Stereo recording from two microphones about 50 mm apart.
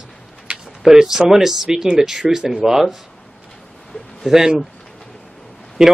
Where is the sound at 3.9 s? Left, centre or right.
Centre.